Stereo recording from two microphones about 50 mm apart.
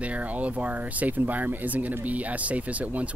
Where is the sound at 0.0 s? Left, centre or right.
Right.